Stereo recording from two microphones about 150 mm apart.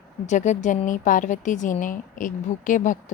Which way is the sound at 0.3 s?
55° left (ahead or behind).